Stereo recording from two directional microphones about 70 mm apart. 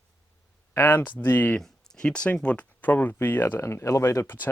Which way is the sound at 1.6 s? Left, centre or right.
Centre.